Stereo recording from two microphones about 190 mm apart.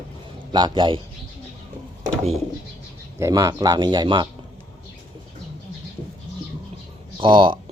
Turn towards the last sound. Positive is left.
turn(degrees=-25)  # may be behind; listen again after turning